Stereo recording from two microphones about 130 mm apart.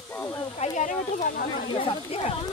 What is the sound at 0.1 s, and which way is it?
Snake, 10° left (ahead or behind).